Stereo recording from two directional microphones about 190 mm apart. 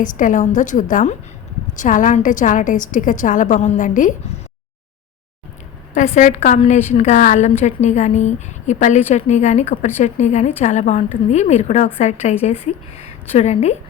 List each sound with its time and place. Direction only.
0.0 s a woman's voice: 45° left (ahead or behind)
5.9 s a woman's voice: 40° left (ahead or behind)